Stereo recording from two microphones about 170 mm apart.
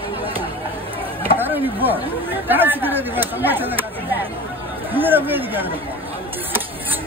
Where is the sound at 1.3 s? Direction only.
10° right (ahead or behind).